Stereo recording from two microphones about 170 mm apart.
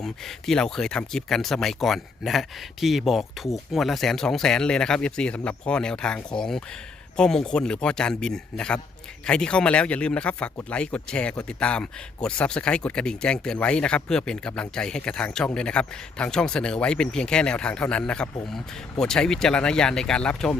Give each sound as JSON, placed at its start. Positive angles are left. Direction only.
{"t": 0.0, "sound": "speech", "side_deg": 0}